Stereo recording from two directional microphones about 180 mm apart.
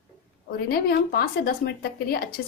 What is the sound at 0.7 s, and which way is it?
Speech, 60° left (ahead or behind).